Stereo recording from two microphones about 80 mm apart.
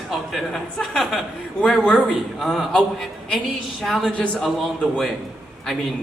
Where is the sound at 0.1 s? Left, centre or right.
Centre.